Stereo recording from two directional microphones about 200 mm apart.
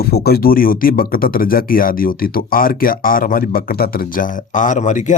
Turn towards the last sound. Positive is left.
turn(degrees=40)  # may be behind; listen again after turning